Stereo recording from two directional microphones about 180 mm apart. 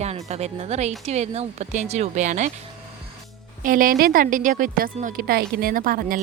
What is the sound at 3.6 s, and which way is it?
A woman's voice, 50° right (ahead or behind).